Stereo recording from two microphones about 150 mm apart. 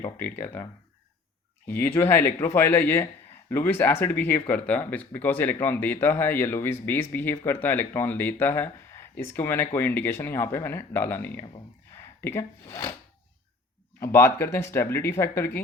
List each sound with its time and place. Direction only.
0.3 s speech: 15° left (ahead or behind)
14.0 s speech: 15° left (ahead or behind)